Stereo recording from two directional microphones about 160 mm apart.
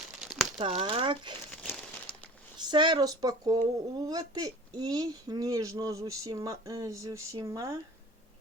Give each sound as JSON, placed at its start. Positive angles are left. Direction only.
{"t": 0.2, "sound": "crumpling", "side_deg": 0}
{"t": 0.6, "sound": "speech", "side_deg": -35}
{"t": 2.6, "sound": "speech", "side_deg": -30}